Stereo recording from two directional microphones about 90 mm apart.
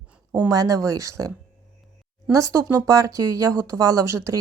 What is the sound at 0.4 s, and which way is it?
Speech, 40° right (ahead or behind).